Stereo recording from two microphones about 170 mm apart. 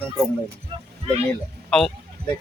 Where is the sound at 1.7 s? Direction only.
5° left (ahead or behind).